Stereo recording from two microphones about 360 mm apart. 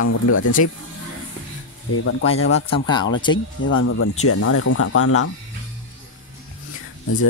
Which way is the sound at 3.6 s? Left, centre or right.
Left.